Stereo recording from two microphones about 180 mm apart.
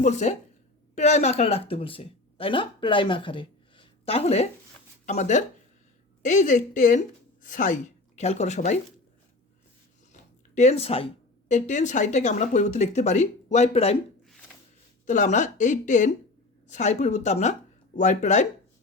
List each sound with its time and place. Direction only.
0.0 s speech: 40° left (ahead or behind)
10.1 s speech: 40° left (ahead or behind)
15.0 s speech: 45° left (ahead or behind)